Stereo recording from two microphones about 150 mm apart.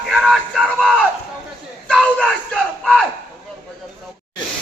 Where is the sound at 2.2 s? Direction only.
10° left (ahead or behind).